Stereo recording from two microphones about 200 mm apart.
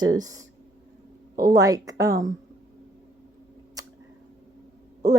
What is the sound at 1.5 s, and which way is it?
Speech, 15° right (ahead or behind).